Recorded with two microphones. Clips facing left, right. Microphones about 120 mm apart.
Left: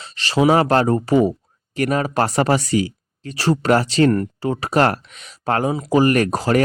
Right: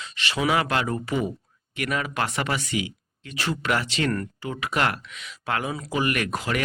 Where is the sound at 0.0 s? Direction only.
35° left (ahead or behind).